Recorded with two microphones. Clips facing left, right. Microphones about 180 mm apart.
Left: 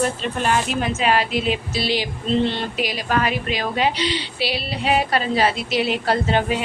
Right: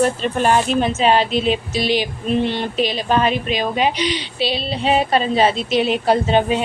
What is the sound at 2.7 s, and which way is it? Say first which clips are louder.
Speech: right 4 dB; 25° right (ahead or behind).